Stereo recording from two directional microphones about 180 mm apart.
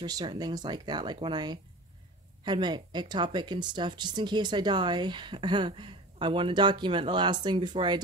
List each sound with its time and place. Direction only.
0.0 s speech: 20° right (ahead or behind)